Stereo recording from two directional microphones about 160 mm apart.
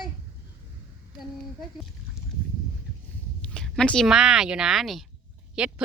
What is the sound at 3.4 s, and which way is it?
Speech, 5° left (ahead or behind).